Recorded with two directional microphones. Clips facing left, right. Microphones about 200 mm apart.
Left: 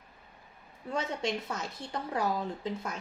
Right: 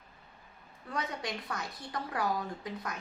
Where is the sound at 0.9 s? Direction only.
25° left (ahead or behind).